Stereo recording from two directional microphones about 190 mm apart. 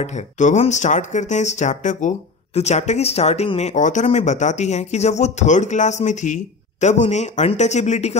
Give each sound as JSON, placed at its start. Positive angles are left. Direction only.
{"t": 0.0, "sound": "speech", "side_deg": 40}